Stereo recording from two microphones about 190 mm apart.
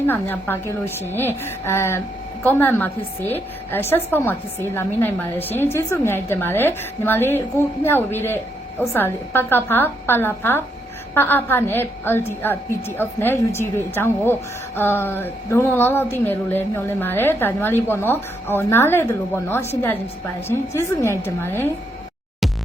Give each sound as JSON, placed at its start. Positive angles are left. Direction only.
{"t": 0.0, "sound": "speech", "side_deg": 10}